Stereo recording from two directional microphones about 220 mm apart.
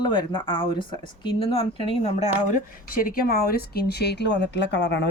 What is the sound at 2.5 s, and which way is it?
Speech, 40° left (ahead or behind).